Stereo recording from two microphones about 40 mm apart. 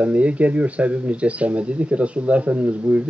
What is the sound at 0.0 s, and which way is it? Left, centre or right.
Speech, right.